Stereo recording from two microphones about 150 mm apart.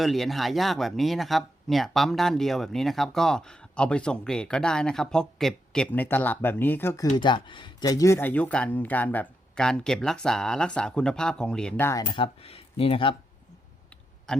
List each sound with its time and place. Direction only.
0.0 s speech: centre (ahead or behind); by 7.1 s 20° left (ahead or behind)
7.2 s speech: 30° left (ahead or behind); by 11.9 s 5° left (ahead or behind)
12.0 s speech: 35° left (ahead or behind)
14.3 s a sound: 5° left (ahead or behind)